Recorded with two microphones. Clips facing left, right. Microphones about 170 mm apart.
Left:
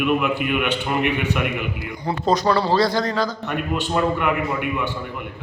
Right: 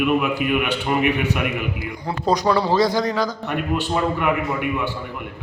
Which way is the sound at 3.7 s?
Centre (ahead or behind).